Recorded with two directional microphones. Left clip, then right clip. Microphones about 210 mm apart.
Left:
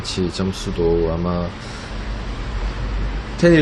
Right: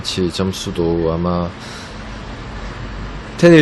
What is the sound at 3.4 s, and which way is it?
Speech, 40° right (ahead or behind).